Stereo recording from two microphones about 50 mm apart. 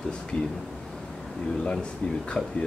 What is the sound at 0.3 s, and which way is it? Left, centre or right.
Speech, left.